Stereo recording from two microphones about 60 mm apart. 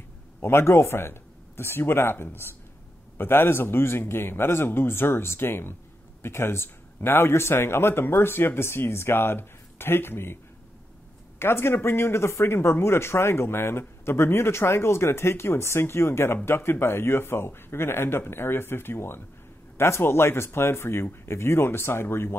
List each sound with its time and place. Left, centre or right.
0.4 s speech: left